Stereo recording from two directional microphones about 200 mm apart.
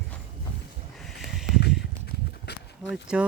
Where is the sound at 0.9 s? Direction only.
Centre (ahead or behind).